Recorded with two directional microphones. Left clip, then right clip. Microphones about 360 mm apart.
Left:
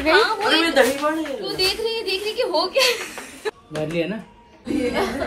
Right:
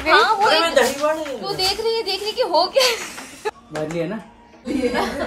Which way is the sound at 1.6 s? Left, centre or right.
Right.